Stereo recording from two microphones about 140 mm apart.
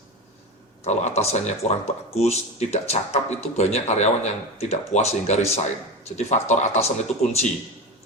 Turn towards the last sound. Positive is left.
turn(degrees=50)  # may be behind; listen again after turning